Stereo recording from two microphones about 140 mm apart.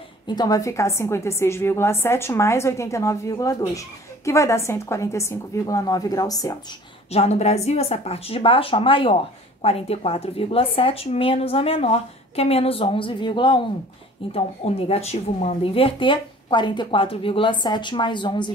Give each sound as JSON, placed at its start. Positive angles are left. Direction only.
{"t": 0.3, "sound": "a woman's voice", "side_deg": 30}
{"t": 7.1, "sound": "a woman's voice", "side_deg": 50}
{"t": 14.3, "sound": "a woman's voice", "side_deg": 45}